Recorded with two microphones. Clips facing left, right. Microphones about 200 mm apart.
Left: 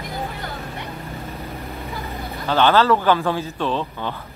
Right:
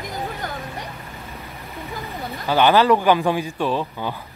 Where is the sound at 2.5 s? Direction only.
15° right (ahead or behind).